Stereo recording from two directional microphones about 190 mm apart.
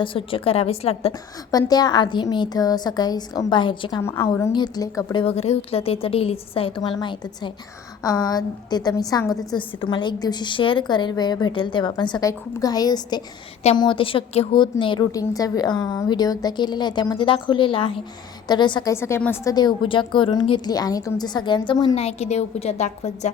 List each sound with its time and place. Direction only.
0.0 s a woman's voice: 30° left (ahead or behind)
1.5 s a woman's voice: 20° left (ahead or behind)
5.2 s a woman's voice: 35° left (ahead or behind)